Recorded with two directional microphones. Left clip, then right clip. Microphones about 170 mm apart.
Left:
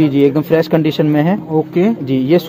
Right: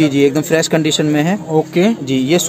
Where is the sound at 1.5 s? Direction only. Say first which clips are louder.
Right 2 dB; 10° right (ahead or behind).